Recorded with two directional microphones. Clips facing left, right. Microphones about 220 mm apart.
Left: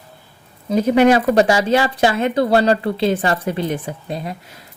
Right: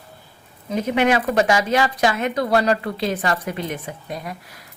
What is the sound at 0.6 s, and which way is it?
Speech, 35° left (ahead or behind).